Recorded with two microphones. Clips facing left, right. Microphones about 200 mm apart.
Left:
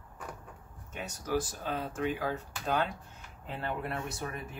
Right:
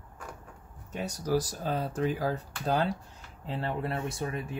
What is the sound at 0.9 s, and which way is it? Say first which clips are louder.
Speech: right 4 dB; 35° right (ahead or behind).